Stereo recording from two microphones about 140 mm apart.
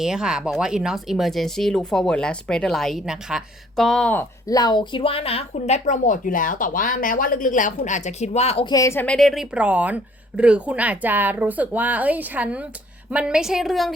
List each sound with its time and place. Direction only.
0.0 s speech: 5° right (ahead or behind); by 4.3 s 10° left (ahead or behind)
4.4 s speech: 25° left (ahead or behind); by 8.6 s 50° left (ahead or behind)
8.6 s speech: 25° left (ahead or behind)
9.0 s a woman's voice: centre (ahead or behind)